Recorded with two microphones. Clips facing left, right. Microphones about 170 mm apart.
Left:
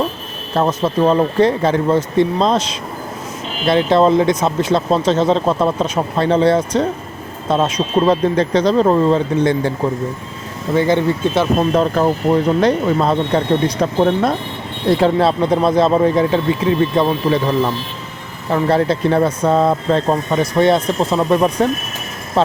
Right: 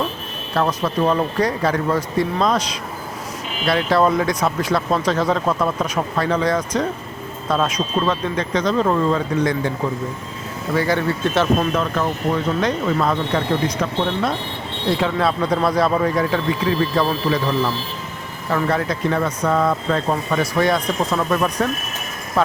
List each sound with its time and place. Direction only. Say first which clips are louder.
0.5 s speech: left 4 dB; 25° left (ahead or behind)
10.8 s speech: left 5 dB; 20° left (ahead or behind)
11.7 s speech: left 6 dB; 35° left (ahead or behind)
14.0 s speech: left 7 dB; 45° left (ahead or behind)
14.8 s speech: left 6 dB; 35° left (ahead or behind)